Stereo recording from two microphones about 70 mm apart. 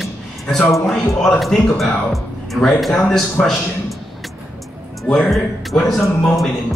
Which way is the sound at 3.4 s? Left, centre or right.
Centre.